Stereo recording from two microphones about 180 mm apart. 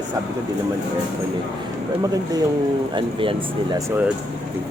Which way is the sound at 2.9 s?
25° right (ahead or behind).